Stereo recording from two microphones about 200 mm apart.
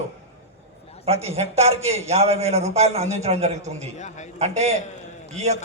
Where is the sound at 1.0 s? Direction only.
30° right (ahead or behind).